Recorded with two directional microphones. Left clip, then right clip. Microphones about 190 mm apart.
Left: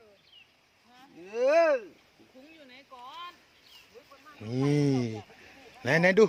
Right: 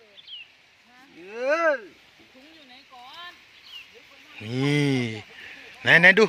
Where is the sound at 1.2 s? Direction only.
45° left (ahead or behind).